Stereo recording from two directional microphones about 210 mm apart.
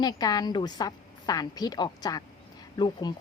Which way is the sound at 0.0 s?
20° left (ahead or behind).